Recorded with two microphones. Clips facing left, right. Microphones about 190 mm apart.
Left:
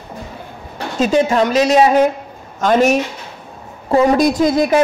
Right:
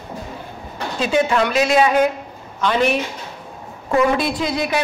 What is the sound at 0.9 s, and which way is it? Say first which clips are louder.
A woman's voice: left 4 dB; 40° left (ahead or behind).